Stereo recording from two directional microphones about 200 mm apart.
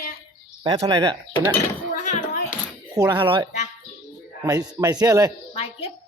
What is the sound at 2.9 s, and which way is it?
Speech, 20° right (ahead or behind).